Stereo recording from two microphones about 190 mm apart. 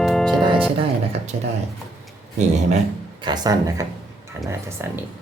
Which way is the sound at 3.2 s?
20° right (ahead or behind).